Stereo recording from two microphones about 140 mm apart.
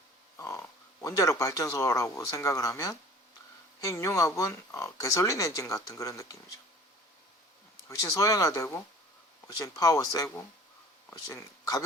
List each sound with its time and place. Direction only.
0.3 s a sound: 20° left (ahead or behind)
1.0 s speech: 20° left (ahead or behind)
7.9 s speech: 25° left (ahead or behind)